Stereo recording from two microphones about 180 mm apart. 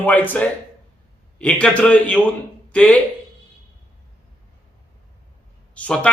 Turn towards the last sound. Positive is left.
turn(degrees=5)  # may be behind; listen again after turning